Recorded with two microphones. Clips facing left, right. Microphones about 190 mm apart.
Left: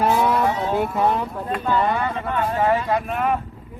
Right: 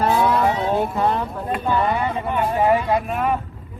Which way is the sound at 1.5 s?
15° right (ahead or behind).